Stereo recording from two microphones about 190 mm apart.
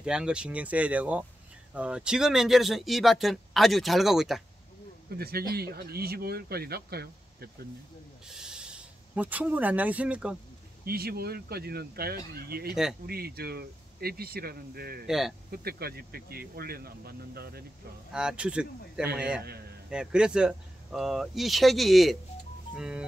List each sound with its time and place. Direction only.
0.0 s speech: 5° right (ahead or behind)
5.1 s speech: 55° right (ahead or behind)
8.3 s speech: 5° right (ahead or behind)
10.9 s speech: 55° right (ahead or behind)
15.0 s speech: centre (ahead or behind)
15.5 s speech: 55° right (ahead or behind)
18.1 s speech: 5° right (ahead or behind)